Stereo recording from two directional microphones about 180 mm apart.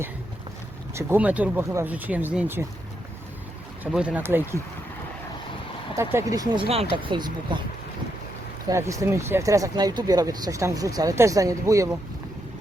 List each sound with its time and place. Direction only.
0.9 s speech: 10° right (ahead or behind)
3.9 s speech: 5° right (ahead or behind)
6.0 s speech: 15° right (ahead or behind)
8.7 s speech: 15° right (ahead or behind)